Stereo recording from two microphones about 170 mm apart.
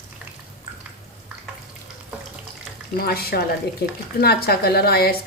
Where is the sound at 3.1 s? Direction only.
65° left (ahead or behind).